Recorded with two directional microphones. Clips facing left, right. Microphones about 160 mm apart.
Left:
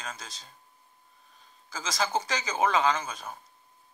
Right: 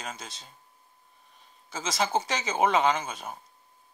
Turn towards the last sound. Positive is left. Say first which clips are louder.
# right 1 dB
turn(degrees=-20)  # may be behind; listen again after turning